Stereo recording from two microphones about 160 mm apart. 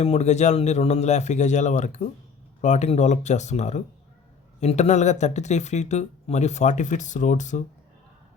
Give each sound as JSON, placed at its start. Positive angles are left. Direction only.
{"t": 0.0, "sound": "speech", "side_deg": 45}